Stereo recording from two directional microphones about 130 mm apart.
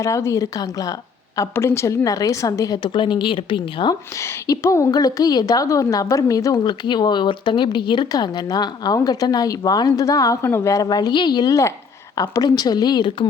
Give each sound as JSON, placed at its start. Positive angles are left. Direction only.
{"t": 0.0, "sound": "a woman's voice", "side_deg": 25}
{"t": 4.2, "sound": "a woman's voice", "side_deg": 20}